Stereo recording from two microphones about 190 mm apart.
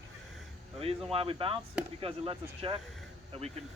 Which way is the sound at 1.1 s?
30° right (ahead or behind).